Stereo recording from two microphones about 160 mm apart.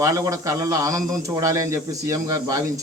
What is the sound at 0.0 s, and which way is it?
A man's voice, 20° right (ahead or behind).